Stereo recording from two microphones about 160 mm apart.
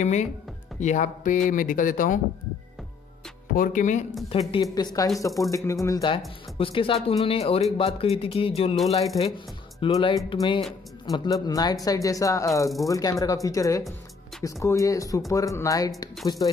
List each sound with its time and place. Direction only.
0.0 s speech: 45° left (ahead or behind)
3.5 s speech: 60° left (ahead or behind)
4.3 s a man's voice: 35° left (ahead or behind)
4.7 s speech: 25° left (ahead or behind)
6.6 s a man's voice: 35° left (ahead or behind)
9.8 s speech: 25° left (ahead or behind)